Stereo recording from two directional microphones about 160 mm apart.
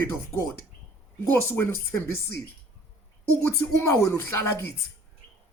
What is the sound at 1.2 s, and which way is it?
Speech, 15° left (ahead or behind).